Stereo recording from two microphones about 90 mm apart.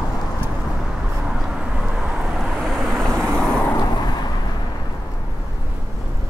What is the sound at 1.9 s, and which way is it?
Vehicle, 5° right (ahead or behind).